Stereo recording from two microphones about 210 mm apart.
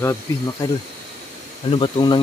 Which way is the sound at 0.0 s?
15° left (ahead or behind).